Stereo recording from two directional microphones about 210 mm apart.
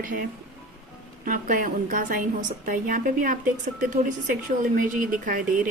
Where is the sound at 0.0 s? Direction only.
40° right (ahead or behind).